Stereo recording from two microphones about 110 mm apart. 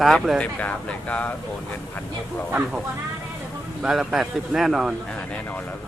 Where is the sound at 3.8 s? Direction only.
5° right (ahead or behind).